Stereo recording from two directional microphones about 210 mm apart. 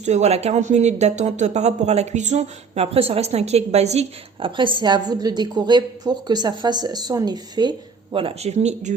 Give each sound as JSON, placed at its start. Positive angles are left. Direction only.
{"t": 0.0, "sound": "speech", "side_deg": -30}